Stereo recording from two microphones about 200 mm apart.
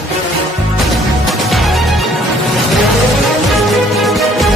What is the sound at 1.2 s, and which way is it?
Music, centre (ahead or behind).